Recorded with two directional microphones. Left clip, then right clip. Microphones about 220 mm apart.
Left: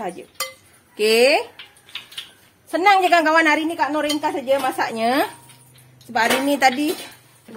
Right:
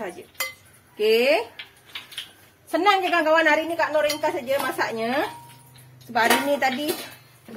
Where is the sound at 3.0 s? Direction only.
55° left (ahead or behind).